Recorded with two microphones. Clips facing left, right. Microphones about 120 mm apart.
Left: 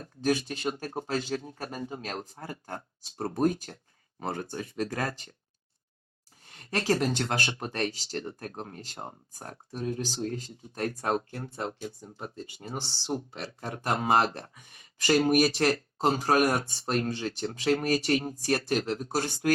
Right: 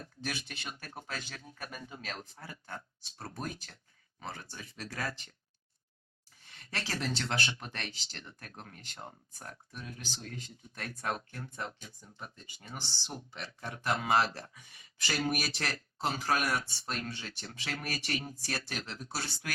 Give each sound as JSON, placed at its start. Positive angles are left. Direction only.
{"t": 0.0, "sound": "speech", "side_deg": 40}
{"t": 6.4, "sound": "speech", "side_deg": 45}